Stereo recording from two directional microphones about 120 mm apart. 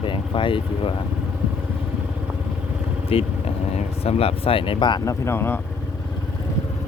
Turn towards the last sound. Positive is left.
turn(degrees=20)  # may be behind; listen again after turning